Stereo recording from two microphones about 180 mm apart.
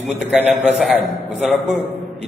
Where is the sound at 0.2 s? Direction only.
Centre (ahead or behind).